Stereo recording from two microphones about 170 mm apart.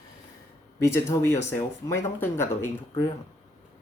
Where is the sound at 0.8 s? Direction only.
15° left (ahead or behind).